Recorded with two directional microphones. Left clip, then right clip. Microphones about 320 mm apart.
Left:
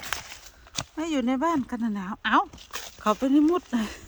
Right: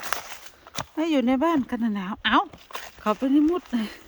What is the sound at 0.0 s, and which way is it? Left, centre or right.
Speech, centre.